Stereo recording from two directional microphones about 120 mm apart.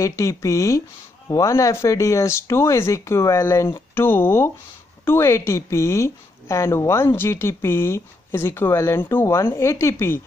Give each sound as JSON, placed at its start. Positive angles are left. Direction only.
{"t": 0.0, "sound": "a woman's voice", "side_deg": 25}